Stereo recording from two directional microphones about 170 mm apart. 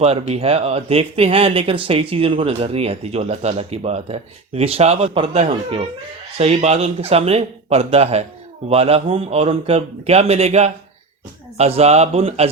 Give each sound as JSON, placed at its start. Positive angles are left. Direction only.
{"t": 0.0, "sound": "speech", "side_deg": -35}